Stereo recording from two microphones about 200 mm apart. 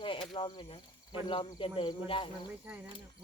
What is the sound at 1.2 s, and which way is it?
Speech, 25° left (ahead or behind).